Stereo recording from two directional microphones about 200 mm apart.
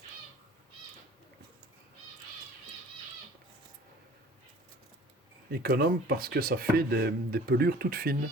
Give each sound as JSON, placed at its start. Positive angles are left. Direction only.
{"t": 5.5, "sound": "speech", "side_deg": -50}